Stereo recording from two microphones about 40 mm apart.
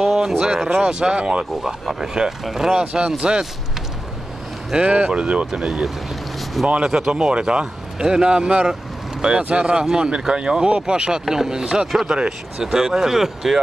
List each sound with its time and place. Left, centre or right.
0.0 s speech: centre
1.4 s speech: centre
2.8 s speech: right
4.7 s speech: right
5.5 s speech: centre
11.9 s speech: centre
12.2 s speech: right
12.6 s speech: centre